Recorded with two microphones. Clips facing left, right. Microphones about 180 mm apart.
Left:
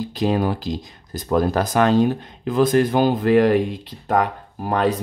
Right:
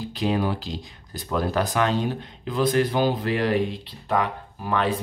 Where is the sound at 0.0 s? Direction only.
45° left (ahead or behind).